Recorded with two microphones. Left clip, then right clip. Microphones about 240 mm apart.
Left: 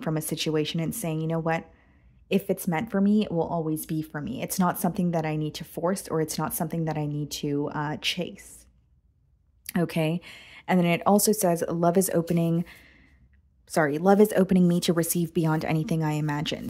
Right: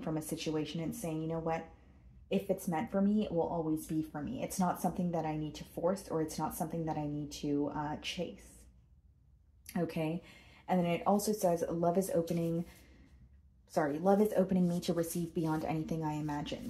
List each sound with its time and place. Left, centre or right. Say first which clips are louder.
0.0 s speech: left 8 dB; left
9.7 s speech: left 9 dB; left
13.7 s speech: left 9 dB; left